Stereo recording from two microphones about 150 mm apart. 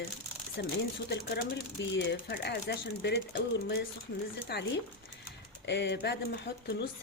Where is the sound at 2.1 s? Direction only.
90° left.